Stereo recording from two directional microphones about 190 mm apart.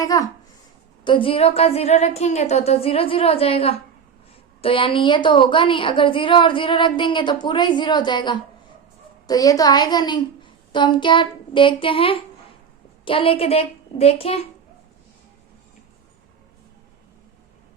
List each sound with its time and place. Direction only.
0.0 s a woman's voice: 20° left (ahead or behind)